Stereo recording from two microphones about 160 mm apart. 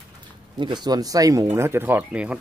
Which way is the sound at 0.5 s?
30° right (ahead or behind).